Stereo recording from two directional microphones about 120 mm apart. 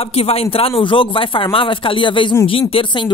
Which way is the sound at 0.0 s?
55° left (ahead or behind).